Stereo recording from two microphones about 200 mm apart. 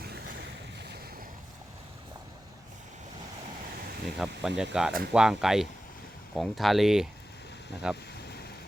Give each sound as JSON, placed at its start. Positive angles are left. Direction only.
{"t": 0.0, "sound": "boat", "side_deg": -55}
{"t": 4.2, "sound": "speech", "side_deg": -5}